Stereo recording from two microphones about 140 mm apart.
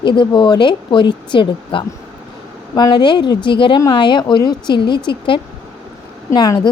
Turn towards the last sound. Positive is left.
turn(degrees=30)  # may be behind; listen again after turning